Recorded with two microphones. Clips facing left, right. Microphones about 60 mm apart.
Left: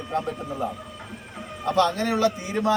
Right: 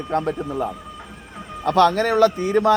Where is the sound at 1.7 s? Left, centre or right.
Right.